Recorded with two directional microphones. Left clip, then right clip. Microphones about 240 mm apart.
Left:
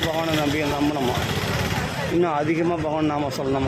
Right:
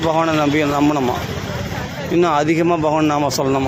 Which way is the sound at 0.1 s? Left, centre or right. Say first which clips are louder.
Right 7 dB; centre.